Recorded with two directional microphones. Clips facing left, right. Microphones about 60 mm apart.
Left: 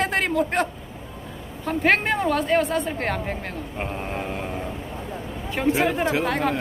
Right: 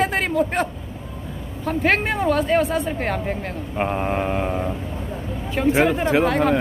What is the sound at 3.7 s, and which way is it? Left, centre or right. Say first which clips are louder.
Mantra: right 9 dB; right.